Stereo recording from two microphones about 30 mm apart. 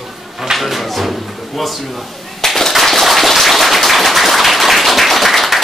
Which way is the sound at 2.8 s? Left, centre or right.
Centre.